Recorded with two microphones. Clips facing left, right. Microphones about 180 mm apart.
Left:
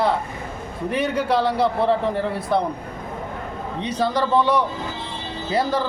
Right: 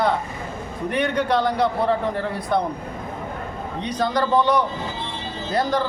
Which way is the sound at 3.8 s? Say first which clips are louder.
Even; 5° left (ahead or behind).